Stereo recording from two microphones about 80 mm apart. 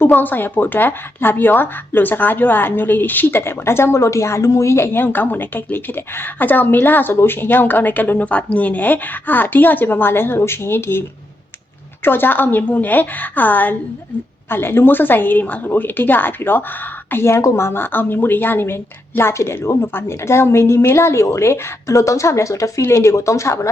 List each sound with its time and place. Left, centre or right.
0.0 s speech: left
12.0 s a woman's voice: left